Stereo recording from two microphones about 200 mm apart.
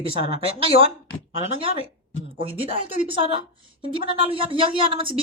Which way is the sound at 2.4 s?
25° right (ahead or behind).